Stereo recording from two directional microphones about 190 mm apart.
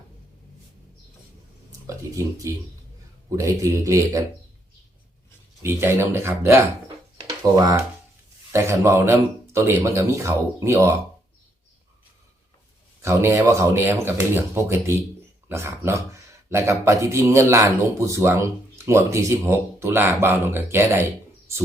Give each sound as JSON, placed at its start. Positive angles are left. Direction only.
{"t": 1.9, "sound": "speech", "side_deg": -15}
{"t": 5.6, "sound": "speech", "side_deg": -15}
{"t": 13.0, "sound": "speech", "side_deg": -15}